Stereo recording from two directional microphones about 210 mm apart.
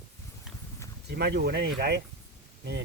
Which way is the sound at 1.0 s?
50° right (ahead or behind).